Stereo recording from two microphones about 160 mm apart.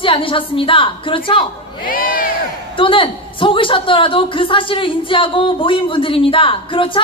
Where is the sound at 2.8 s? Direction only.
35° left (ahead or behind).